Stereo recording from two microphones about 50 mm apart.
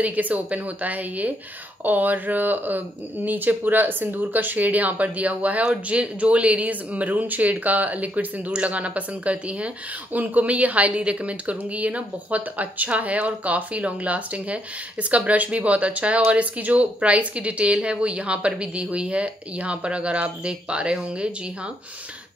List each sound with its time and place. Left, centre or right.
0.0 s a woman's voice: right